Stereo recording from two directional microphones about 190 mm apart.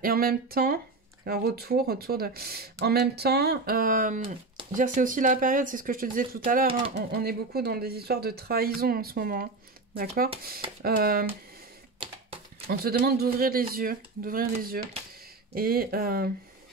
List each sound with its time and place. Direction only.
0.0 s speech: 50° right (ahead or behind)
12.6 s speech: 55° right (ahead or behind)